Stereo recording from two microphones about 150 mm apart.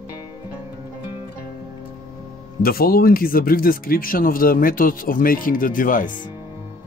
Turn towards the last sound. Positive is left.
turn(degrees=65)  # may be behind; listen again after turning